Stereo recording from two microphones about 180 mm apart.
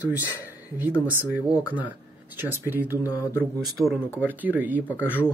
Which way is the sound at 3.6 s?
Centre (ahead or behind).